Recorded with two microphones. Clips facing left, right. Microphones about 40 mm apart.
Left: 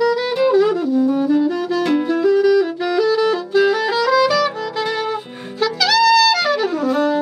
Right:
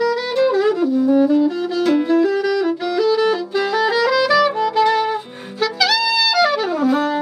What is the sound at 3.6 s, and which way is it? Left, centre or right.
Music, centre.